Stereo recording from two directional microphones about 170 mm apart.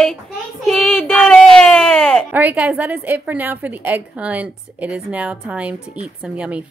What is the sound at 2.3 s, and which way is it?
A woman's voice, 10° right (ahead or behind).